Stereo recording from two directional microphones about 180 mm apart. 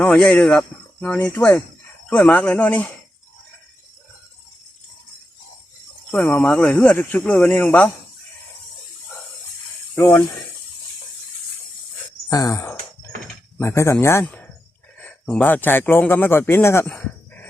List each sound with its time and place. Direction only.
0.0 s speech: 5° left (ahead or behind)
6.1 s speech: 10° left (ahead or behind)
9.9 s speech: 15° left (ahead or behind)
12.3 s a sound: 20° left (ahead or behind)
13.6 s speech: 15° left (ahead or behind)